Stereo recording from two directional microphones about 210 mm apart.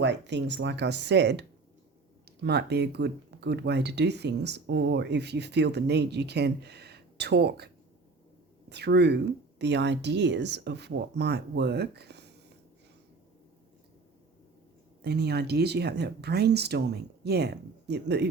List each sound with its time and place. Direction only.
0.0 s speech: 55° right (ahead or behind)
8.7 s speech: 50° right (ahead or behind)
15.0 s speech: 50° right (ahead or behind)